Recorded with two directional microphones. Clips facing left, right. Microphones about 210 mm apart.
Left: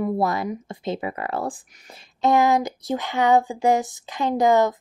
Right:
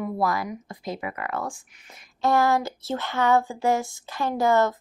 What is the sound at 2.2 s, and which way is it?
Speech, 15° left (ahead or behind).